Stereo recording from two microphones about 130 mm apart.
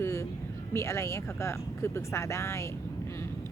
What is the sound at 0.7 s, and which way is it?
Speech, 20° left (ahead or behind).